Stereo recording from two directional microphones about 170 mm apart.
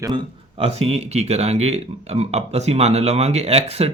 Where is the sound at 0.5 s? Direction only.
35° right (ahead or behind).